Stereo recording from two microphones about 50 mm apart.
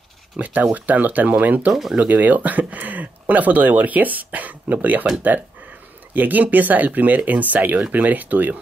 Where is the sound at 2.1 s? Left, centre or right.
Right.